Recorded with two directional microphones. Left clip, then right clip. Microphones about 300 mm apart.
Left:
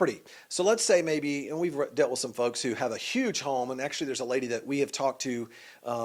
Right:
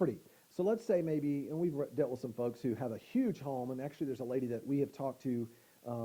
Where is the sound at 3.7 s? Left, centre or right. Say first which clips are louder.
Left 8 dB; centre.